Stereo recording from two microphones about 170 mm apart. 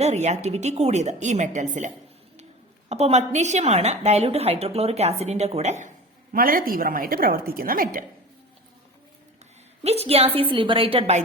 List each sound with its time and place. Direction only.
0.0 s a woman's voice: 40° right (ahead or behind)
2.9 s a woman's voice: 40° right (ahead or behind)
6.3 s a woman's voice: 55° right (ahead or behind)
9.8 s a woman's voice: 35° right (ahead or behind)